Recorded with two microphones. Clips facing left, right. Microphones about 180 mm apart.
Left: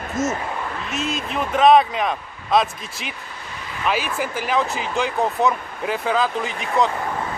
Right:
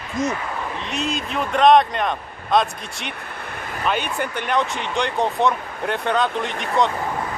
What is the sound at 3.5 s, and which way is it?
Vehicle, 55° right (ahead or behind).